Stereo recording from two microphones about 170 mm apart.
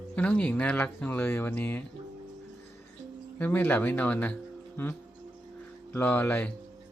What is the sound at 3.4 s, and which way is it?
Speech, 10° left (ahead or behind).